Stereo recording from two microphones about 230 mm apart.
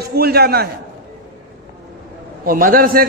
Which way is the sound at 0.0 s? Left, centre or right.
Right.